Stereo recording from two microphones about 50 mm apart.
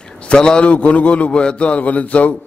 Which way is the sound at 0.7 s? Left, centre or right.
Left.